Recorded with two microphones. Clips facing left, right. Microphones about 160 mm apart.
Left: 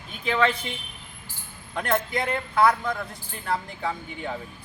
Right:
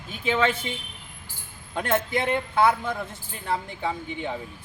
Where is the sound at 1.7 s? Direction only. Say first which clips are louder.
Right 1 dB; 25° right (ahead or behind).